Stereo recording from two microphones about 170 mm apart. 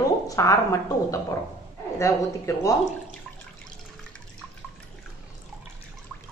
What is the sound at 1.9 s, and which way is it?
Speech, 20° left (ahead or behind).